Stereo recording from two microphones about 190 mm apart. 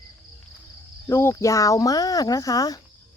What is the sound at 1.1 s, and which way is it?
Speech, 15° left (ahead or behind).